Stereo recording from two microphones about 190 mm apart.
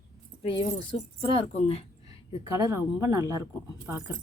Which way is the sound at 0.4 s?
25° left (ahead or behind).